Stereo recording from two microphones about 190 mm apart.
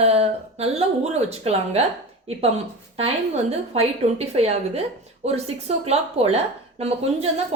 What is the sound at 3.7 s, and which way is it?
A woman's voice, 30° right (ahead or behind).